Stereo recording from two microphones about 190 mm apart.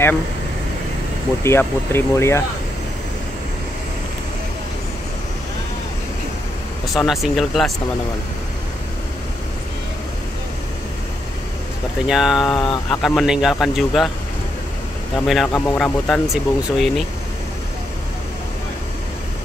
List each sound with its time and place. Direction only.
1.4 s speech: 15° left (ahead or behind)
6.9 s speech: centre (ahead or behind)
12.1 s speech: centre (ahead or behind)
15.1 s speech: centre (ahead or behind)
15.5 s speech: 20° left (ahead or behind)
15.8 s speech: centre (ahead or behind)